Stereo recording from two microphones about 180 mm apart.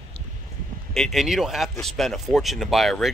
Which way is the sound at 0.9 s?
Centre (ahead or behind).